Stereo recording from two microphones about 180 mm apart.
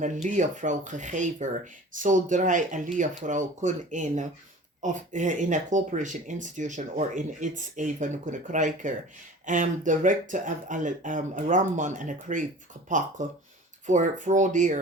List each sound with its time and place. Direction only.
0.0 s speech: 45° right (ahead or behind)